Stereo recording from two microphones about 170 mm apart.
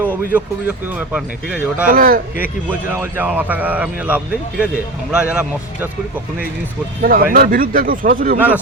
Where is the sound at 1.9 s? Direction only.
55° right (ahead or behind).